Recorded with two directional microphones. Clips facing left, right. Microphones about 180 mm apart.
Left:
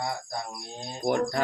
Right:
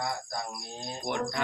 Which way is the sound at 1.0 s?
40° left (ahead or behind).